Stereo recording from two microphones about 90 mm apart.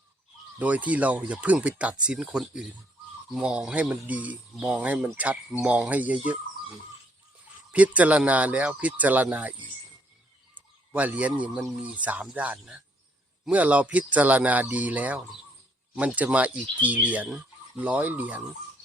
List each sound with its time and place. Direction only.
0.6 s speech: 15° right (ahead or behind)
7.7 s speech: 15° right (ahead or behind)
10.5 s bird: 15° right (ahead or behind)
11.8 s speech: 15° right (ahead or behind)